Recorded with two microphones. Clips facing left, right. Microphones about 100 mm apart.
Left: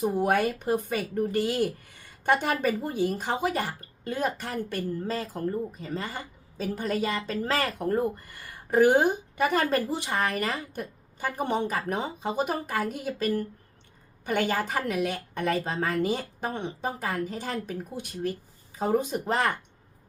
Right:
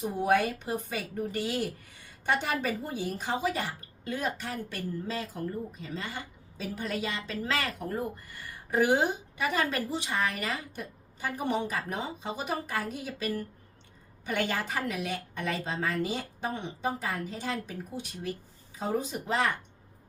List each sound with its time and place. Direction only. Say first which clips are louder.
0.0 s speech: left 2 dB; 55° left (ahead or behind)